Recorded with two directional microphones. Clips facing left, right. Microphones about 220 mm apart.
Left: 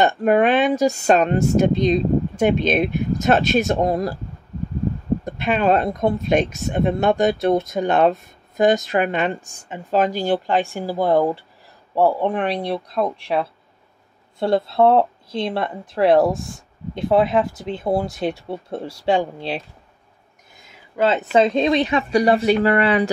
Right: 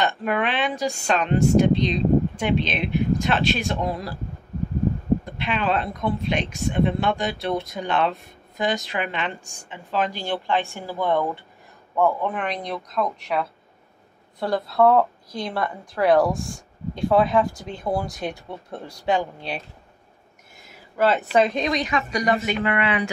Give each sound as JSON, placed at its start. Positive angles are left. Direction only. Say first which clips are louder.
{"t": 0.2, "sound": "speech", "louder": "left 8 dB", "side_deg": 45}
{"t": 5.2, "sound": "a woman's voice", "louder": "left 6 dB", "side_deg": 45}
{"t": 20.9, "sound": "speech", "louder": "left 2 dB", "side_deg": 20}